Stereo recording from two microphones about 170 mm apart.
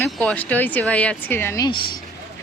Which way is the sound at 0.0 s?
10° left (ahead or behind).